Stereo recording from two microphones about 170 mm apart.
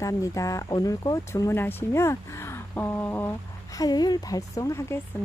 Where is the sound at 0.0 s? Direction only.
20° left (ahead or behind).